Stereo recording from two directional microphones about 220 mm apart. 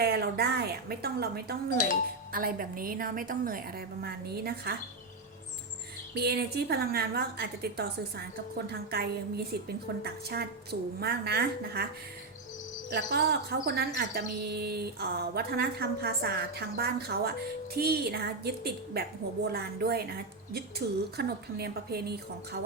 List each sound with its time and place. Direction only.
0.0 s a woman's voice: 45° right (ahead or behind)
6.1 s a woman's voice: 45° right (ahead or behind)
12.9 s a woman's voice: 45° right (ahead or behind)